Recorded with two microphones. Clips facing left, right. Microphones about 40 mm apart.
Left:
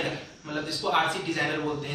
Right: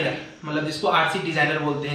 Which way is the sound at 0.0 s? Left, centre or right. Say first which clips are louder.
Right 6 dB; right.